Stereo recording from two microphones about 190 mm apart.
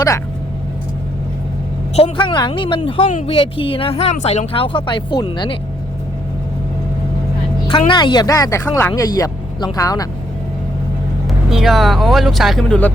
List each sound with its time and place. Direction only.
2.0 s speech: 25° left (ahead or behind)
3.1 s speech: 40° left (ahead or behind)
3.3 s speech: 30° left (ahead or behind)
7.7 s speech: 25° left (ahead or behind)
11.3 s speech: centre (ahead or behind)